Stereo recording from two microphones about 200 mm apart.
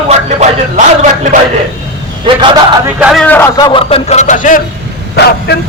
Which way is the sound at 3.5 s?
20° left (ahead or behind).